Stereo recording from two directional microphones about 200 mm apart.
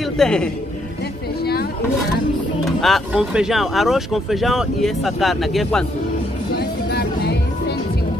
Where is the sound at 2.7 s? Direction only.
Centre (ahead or behind).